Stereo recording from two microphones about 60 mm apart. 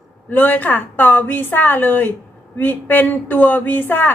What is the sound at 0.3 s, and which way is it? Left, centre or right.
A woman's voice, left.